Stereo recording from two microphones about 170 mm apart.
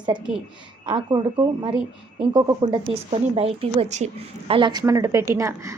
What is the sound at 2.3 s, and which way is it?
A woman's voice, 25° right (ahead or behind).